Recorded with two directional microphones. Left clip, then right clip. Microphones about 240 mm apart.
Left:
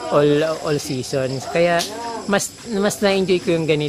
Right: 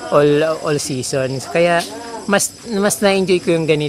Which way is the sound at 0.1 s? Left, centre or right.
Right.